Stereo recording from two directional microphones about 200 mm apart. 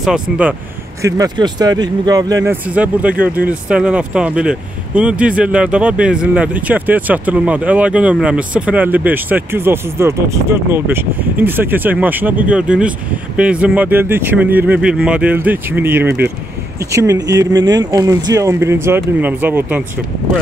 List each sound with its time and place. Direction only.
0.0 s speech: 5° right (ahead or behind)
1.0 s speech: 15° right (ahead or behind)